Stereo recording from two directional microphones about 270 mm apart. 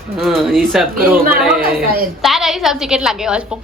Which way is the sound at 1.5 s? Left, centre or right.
Right.